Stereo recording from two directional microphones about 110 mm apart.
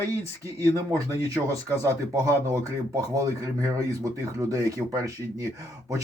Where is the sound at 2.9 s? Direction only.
30° right (ahead or behind).